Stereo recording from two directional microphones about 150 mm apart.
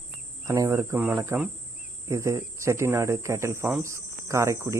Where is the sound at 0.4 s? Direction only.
20° right (ahead or behind).